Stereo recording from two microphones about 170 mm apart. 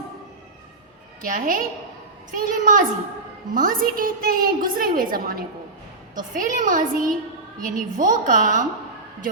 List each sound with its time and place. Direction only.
1.2 s a woman's voice: 50° right (ahead or behind)